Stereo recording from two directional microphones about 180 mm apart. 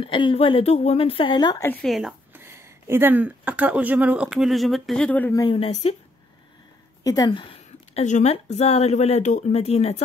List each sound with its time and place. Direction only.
0.0 s speech: 30° left (ahead or behind)
1.7 s speech: centre (ahead or behind)
2.3 s speech: 15° right (ahead or behind); by 5.4 s 10° left (ahead or behind)
5.4 s speech: 30° left (ahead or behind)
7.0 s a sound: 20° left (ahead or behind)
8.0 s speech: 40° left (ahead or behind)